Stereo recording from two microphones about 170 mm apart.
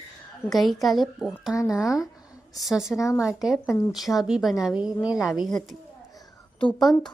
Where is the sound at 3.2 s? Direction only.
5° right (ahead or behind).